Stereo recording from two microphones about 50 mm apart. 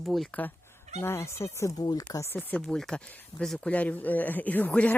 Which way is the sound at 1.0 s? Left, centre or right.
Left.